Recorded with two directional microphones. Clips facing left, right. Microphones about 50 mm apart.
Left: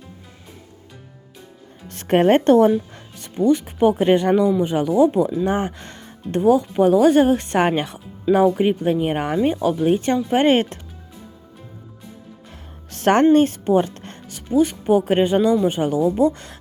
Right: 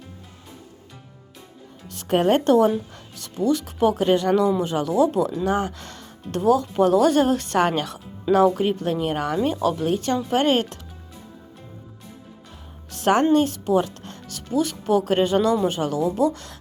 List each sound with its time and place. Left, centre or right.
1.9 s a woman's voice: left
9.6 s speech: centre
9.9 s speech: left
12.9 s music: left
13.3 s speech: left
14.3 s speech: left